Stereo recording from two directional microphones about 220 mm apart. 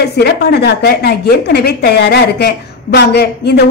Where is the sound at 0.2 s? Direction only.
45° left (ahead or behind).